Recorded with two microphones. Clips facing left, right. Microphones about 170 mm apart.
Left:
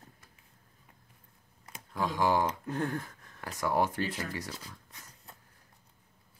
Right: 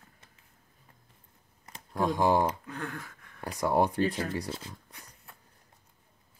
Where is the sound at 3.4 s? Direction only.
25° right (ahead or behind).